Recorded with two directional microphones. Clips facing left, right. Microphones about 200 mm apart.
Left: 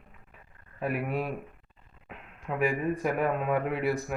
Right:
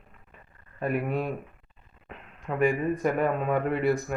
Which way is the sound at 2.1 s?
5° left (ahead or behind).